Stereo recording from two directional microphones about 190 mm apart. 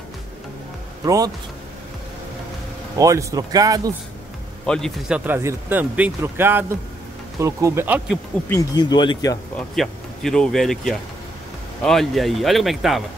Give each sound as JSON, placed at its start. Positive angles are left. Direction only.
{"t": 1.0, "sound": "speech", "side_deg": -20}
{"t": 3.0, "sound": "speech", "side_deg": -15}
{"t": 4.6, "sound": "speech", "side_deg": 5}
{"t": 8.5, "sound": "speech", "side_deg": 20}
{"t": 9.6, "sound": "speech", "side_deg": 5}